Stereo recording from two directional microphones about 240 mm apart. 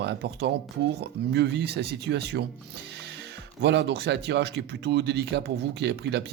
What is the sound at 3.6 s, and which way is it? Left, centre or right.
Speech, right.